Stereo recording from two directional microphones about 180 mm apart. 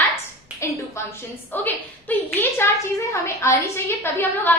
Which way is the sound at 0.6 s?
15° left (ahead or behind).